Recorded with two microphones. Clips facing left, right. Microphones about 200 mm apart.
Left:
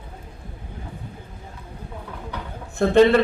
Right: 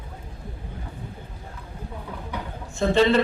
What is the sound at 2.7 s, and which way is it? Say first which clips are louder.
Speech: left 3 dB; 60° left (ahead or behind).